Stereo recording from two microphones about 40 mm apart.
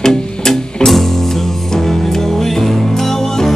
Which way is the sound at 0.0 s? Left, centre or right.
Centre.